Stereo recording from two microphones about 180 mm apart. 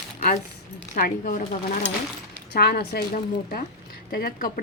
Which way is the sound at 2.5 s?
60° left (ahead or behind).